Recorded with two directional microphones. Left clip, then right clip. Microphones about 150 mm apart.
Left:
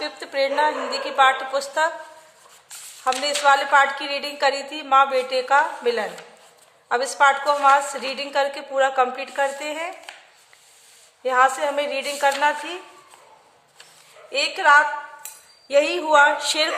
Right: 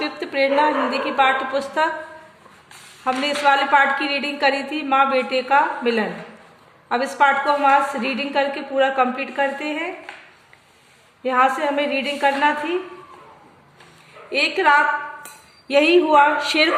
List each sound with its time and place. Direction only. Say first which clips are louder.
0.0 s a woman's voice: right 3 dB; 40° left (ahead or behind)
3.0 s a woman's voice: right 1 dB; 30° left (ahead or behind)
11.2 s a woman's voice: right 1 dB; 40° left (ahead or behind)
14.3 s a woman's voice: right 1 dB; 35° left (ahead or behind)